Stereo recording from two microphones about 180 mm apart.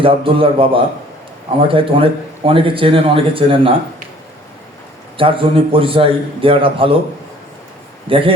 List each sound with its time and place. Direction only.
0.0 s speech: 30° right (ahead or behind)
5.1 s speech: 30° right (ahead or behind)
8.0 s a man's voice: 30° right (ahead or behind)